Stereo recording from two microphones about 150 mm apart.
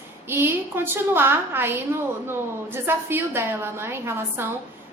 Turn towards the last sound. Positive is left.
turn(degrees=-15)  # may be behind; listen again after turning